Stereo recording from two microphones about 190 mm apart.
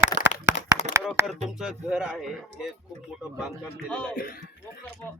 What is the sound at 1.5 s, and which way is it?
Speech, 5° right (ahead or behind).